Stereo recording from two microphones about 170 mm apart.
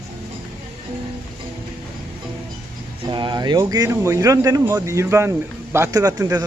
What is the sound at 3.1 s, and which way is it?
Speech, 25° right (ahead or behind).